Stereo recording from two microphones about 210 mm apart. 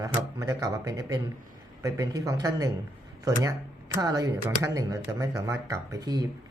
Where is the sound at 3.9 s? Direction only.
15° right (ahead or behind).